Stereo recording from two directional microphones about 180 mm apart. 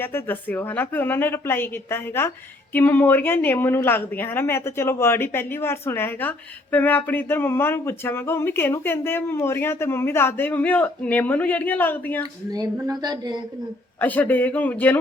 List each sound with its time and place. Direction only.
0.0 s a woman's voice: 10° left (ahead or behind)
12.5 s a woman's voice: 20° right (ahead or behind)
14.0 s a woman's voice: 10° left (ahead or behind)